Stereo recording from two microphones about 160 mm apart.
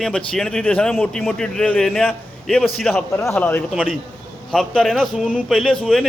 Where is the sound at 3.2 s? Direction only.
15° left (ahead or behind).